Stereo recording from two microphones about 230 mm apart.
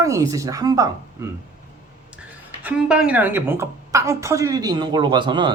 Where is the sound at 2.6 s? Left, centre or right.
Centre.